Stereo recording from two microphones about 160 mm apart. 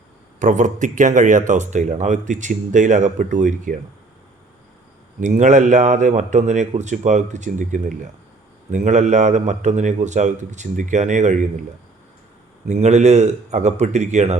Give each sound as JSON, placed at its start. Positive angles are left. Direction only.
{"t": 0.3, "sound": "speech", "side_deg": -50}
{"t": 5.2, "sound": "speech", "side_deg": -50}
{"t": 12.6, "sound": "speech", "side_deg": -45}